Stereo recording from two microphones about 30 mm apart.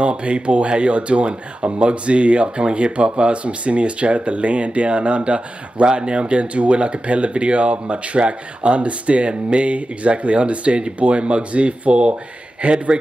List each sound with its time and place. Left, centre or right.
0.0 s speech: right